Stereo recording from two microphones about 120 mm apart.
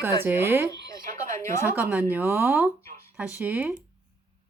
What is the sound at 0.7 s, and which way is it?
Speech, 35° left (ahead or behind).